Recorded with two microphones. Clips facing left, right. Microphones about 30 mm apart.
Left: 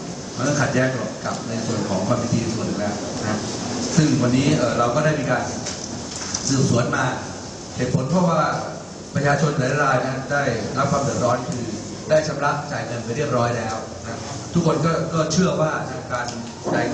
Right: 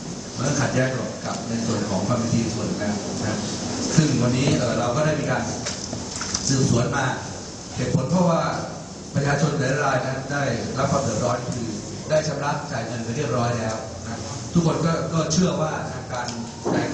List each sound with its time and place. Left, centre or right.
0.3 s a man's voice: centre
6.5 s a man's voice: centre